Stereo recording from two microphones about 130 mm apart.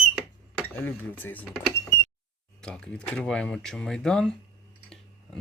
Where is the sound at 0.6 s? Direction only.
15° left (ahead or behind).